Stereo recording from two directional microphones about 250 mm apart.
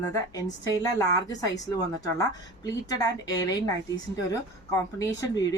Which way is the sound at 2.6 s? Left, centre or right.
Centre.